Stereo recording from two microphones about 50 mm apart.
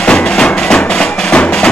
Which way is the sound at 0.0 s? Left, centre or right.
Centre.